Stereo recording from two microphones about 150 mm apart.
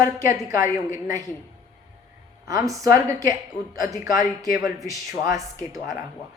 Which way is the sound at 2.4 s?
20° right (ahead or behind).